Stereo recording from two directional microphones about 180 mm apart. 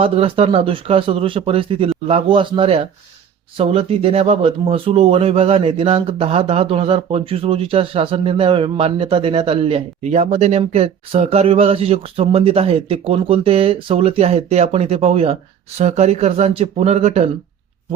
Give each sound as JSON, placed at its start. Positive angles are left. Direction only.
{"t": 0.0, "sound": "speech", "side_deg": -30}